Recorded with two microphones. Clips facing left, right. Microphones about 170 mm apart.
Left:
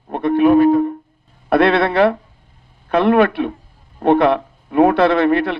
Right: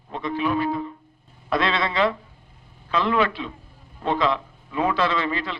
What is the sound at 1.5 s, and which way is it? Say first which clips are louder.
A man's voice: left 10 dB; 60° left (ahead or behind).